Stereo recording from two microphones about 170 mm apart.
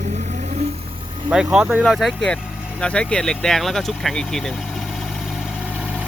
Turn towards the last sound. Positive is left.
turn(degrees=-5)  # may be behind; listen again after turning